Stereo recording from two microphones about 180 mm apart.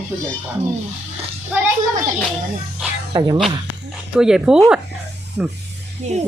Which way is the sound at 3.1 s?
20° right (ahead or behind).